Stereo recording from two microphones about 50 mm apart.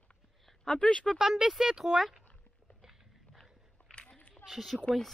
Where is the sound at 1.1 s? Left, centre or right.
Centre.